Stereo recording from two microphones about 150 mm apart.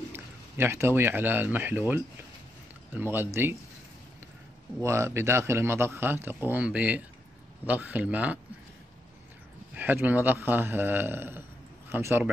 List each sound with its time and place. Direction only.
0.1 s speech: 15° right (ahead or behind)
4.8 s a man's voice: 20° right (ahead or behind)
9.8 s a man's voice: 10° right (ahead or behind)